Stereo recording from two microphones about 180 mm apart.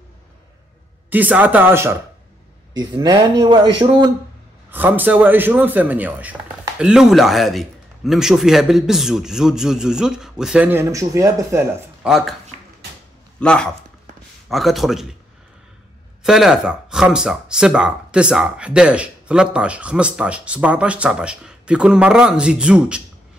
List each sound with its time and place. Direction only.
1.1 s speech: 10° right (ahead or behind)
4.6 s speech: 10° right (ahead or behind)
12.0 s speech: centre (ahead or behind)
13.4 s speech: 5° left (ahead or behind)
16.3 s speech: 5° right (ahead or behind)